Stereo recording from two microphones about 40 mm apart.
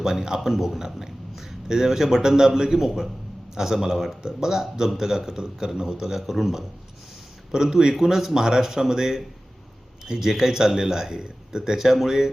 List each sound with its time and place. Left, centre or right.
0.0 s a man's voice: centre
7.5 s a man's voice: centre